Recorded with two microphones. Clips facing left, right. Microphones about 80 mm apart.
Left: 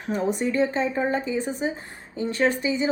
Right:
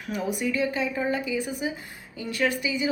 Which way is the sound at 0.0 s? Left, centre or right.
Left.